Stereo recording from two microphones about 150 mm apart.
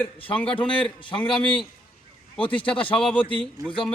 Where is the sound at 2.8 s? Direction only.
35° left (ahead or behind).